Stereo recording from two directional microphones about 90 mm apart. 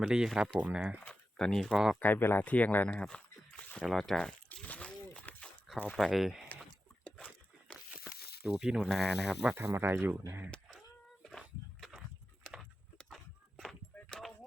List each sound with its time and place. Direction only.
0.0 s speech: 5° right (ahead or behind)
1.0 s speech: 5° left (ahead or behind)
2.0 s speech: 20° left (ahead or behind)
3.8 s speech: centre (ahead or behind)
4.6 s a sound: 15° left (ahead or behind)
6.0 s speech: 5° right (ahead or behind)
7.9 s speech: 10° right (ahead or behind)
9.6 s speech: 25° right (ahead or behind)
11.2 s a sound: 5° left (ahead or behind)
13.0 s walk: centre (ahead or behind)
13.9 s a sound: 5° left (ahead or behind)